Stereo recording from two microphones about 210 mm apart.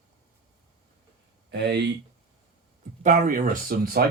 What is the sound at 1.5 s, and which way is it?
Speech, 55° right (ahead or behind).